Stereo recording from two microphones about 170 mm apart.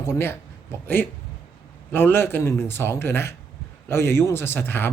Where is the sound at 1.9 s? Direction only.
10° left (ahead or behind).